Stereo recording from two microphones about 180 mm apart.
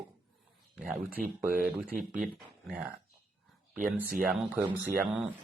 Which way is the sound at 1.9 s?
45° right (ahead or behind).